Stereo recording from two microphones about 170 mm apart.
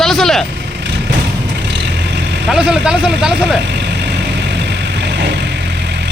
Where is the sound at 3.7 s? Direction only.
90° right.